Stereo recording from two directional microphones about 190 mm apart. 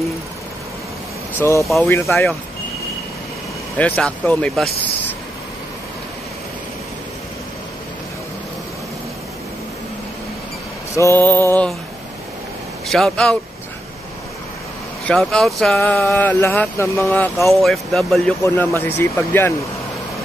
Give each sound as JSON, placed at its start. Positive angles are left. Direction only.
{"t": 1.6, "sound": "speech", "side_deg": 0}
{"t": 3.7, "sound": "speech", "side_deg": 5}
{"t": 11.0, "sound": "speech", "side_deg": 10}
{"t": 12.9, "sound": "speech", "side_deg": 5}
{"t": 15.0, "sound": "speech", "side_deg": 5}
{"t": 18.4, "sound": "speech", "side_deg": 15}